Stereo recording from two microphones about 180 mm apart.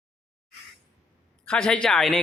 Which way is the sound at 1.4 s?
5° left (ahead or behind).